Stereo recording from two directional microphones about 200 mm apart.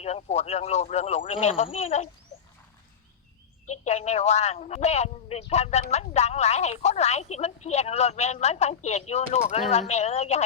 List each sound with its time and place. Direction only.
0.0 s a woman's voice: 30° left (ahead or behind)
2.3 s a sound: 35° left (ahead or behind)
3.7 s a woman's voice: 35° left (ahead or behind)